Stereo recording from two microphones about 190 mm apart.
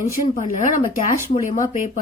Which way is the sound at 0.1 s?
40° left (ahead or behind).